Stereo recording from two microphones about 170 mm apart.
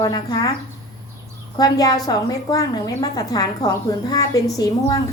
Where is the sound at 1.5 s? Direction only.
25° left (ahead or behind).